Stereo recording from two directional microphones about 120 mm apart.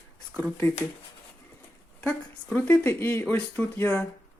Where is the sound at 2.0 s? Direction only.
15° left (ahead or behind).